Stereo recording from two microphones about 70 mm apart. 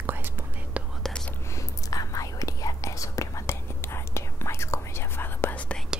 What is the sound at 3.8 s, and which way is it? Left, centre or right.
Whispering, left.